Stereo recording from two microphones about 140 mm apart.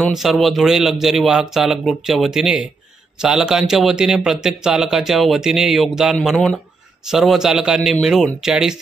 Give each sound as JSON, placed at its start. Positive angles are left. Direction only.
{"t": 0.1, "sound": "a man's voice", "side_deg": 0}